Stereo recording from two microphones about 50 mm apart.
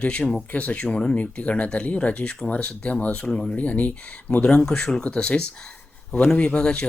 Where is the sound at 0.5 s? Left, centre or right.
Left.